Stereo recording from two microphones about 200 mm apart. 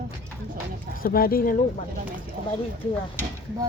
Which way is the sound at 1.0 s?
45° left (ahead or behind).